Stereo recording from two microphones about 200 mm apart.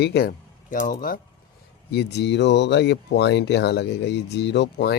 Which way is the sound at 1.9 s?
55° left (ahead or behind).